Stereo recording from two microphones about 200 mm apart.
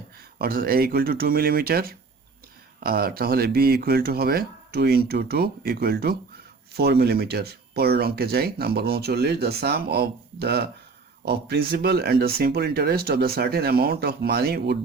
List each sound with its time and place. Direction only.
0.3 s speech: 50° right (ahead or behind)